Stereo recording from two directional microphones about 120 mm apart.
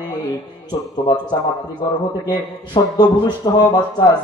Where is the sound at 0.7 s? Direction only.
35° left (ahead or behind).